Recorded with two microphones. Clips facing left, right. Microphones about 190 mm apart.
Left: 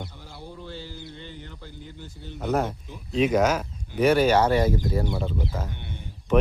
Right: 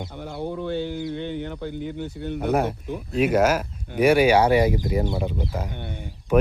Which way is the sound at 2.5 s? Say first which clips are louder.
Right 2 dB; 10° right (ahead or behind).